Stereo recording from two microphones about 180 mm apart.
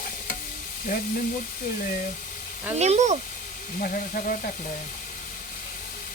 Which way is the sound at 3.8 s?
50° left (ahead or behind).